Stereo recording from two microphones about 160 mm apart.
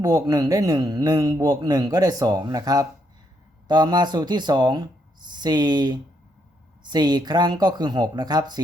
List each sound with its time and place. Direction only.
0.0 s a man's voice: 20° right (ahead or behind)